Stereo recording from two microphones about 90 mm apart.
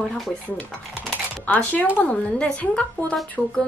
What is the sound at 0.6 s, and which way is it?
A woman's voice, 15° left (ahead or behind).